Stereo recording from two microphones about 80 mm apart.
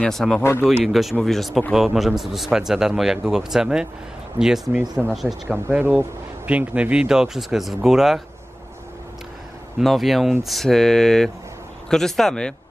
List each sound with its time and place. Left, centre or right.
0.0 s a man's voice: centre
0.4 s speech: left
0.7 s a man's voice: centre
5.0 s a man's voice: centre
5.7 s speech: right; by 8.2 s centre
9.8 s a man's voice: centre